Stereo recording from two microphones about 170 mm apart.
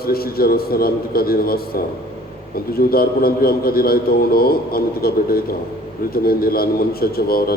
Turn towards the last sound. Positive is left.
turn(degrees=60)  # may be behind; listen again after turning